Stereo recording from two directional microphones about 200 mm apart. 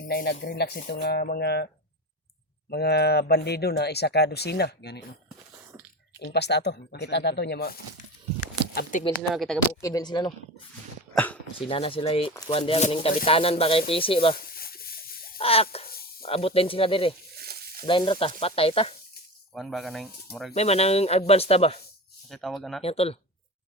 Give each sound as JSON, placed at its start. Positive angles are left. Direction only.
{"t": 0.0, "sound": "speech", "side_deg": 50}
{"t": 6.1, "sound": "speech", "side_deg": 55}
{"t": 9.3, "sound": "speech", "side_deg": 0}
{"t": 9.8, "sound": "speech", "side_deg": 20}
{"t": 11.7, "sound": "speech", "side_deg": 25}
{"t": 14.3, "sound": "a sound", "side_deg": 50}
{"t": 15.4, "sound": "a sound", "side_deg": 30}
{"t": 16.2, "sound": "speech", "side_deg": 30}
{"t": 17.3, "sound": "sizzle", "side_deg": -50}
{"t": 17.8, "sound": "speech", "side_deg": 25}
{"t": 19.5, "sound": "speech", "side_deg": 0}
{"t": 20.5, "sound": "speech", "side_deg": 30}
{"t": 22.3, "sound": "speech", "side_deg": 0}
{"t": 22.8, "sound": "speech", "side_deg": 30}